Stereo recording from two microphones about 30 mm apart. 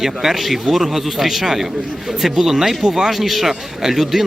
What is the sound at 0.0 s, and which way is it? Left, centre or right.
A man's voice, centre.